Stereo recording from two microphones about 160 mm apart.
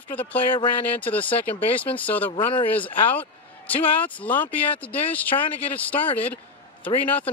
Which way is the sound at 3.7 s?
10° left (ahead or behind).